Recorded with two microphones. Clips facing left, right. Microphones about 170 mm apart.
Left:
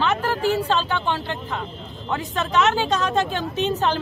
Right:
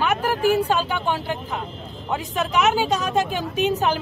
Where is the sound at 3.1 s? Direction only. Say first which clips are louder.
Even; centre (ahead or behind).